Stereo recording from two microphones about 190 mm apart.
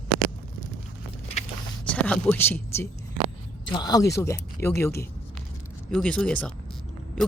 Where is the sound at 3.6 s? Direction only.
20° left (ahead or behind).